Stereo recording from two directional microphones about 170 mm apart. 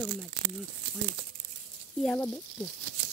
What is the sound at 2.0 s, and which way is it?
Speech, 5° left (ahead or behind).